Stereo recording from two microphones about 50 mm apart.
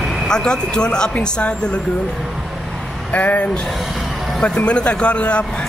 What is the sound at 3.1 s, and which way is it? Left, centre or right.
Speech, left.